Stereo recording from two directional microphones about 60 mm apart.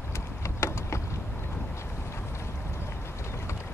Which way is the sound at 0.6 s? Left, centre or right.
Left.